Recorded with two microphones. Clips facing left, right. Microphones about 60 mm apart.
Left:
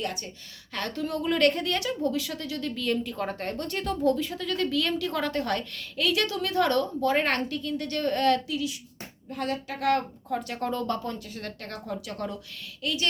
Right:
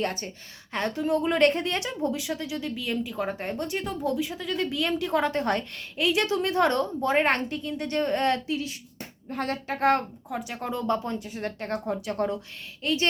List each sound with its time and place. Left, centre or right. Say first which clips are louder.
0.0 s speech: right 4 dB; right
0.7 s speech: right 5 dB; right
10.2 s speech: left 2 dB; centre; by 13.1 s right